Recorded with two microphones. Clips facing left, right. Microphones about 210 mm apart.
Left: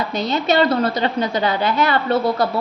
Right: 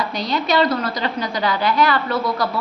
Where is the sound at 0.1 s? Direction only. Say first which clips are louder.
Left 2 dB; 25° left (ahead or behind).